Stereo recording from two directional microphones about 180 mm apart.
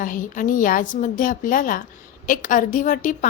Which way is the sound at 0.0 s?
50° left (ahead or behind).